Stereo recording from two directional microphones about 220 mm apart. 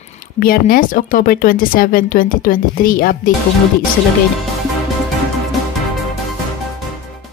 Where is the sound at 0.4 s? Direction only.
40° left (ahead or behind).